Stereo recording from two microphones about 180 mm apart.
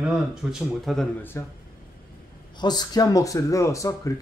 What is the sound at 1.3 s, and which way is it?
Speech, 15° left (ahead or behind).